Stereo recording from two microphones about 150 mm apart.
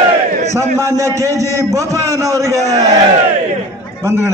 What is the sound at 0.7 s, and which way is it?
A man's voice, 20° right (ahead or behind).